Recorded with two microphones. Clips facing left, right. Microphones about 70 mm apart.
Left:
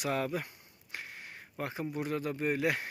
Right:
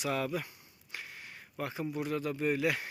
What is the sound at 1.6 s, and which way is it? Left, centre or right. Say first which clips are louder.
Speech: even; left.